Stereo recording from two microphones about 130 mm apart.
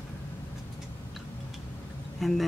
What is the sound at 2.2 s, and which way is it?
Speech, centre (ahead or behind).